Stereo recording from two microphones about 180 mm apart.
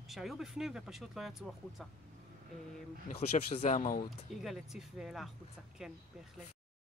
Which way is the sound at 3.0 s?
40° left (ahead or behind).